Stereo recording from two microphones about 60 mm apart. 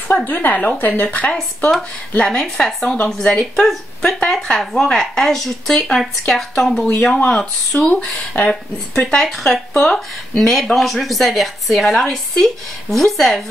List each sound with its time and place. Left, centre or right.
0.1 s speech: left; by 13.4 s centre